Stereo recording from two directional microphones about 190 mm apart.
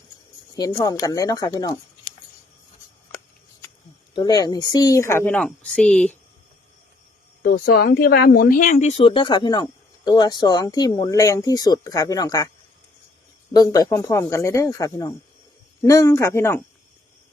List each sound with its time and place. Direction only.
0.5 s speech: 20° left (ahead or behind)
4.1 s a woman's voice: 20° left (ahead or behind); by 6.1 s 5° left (ahead or behind)
7.4 s speech: 50° left (ahead or behind); by 12.5 s 20° left (ahead or behind)
13.5 s a woman's voice: 20° left (ahead or behind)